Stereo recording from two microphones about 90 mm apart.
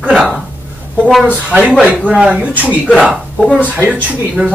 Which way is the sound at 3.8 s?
15° right (ahead or behind).